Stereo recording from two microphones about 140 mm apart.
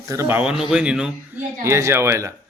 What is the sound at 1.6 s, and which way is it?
Speech, 20° right (ahead or behind).